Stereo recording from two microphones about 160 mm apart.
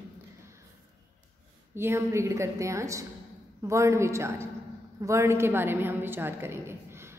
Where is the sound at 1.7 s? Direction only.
15° right (ahead or behind).